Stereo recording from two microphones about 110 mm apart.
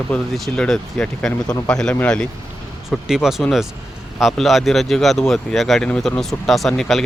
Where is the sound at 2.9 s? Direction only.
5° right (ahead or behind).